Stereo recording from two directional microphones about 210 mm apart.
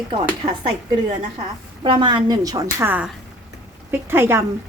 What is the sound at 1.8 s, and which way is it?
Speech, 20° right (ahead or behind).